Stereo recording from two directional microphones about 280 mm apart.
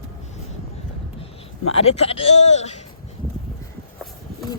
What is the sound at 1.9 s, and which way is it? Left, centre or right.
Speech, left.